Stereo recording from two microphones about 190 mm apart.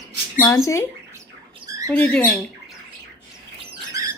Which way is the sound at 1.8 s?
5° left (ahead or behind).